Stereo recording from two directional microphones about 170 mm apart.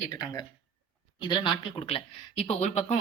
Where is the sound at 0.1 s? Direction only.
25° left (ahead or behind).